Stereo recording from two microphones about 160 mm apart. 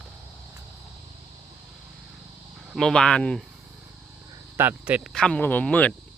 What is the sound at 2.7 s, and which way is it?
Speech, 5° left (ahead or behind).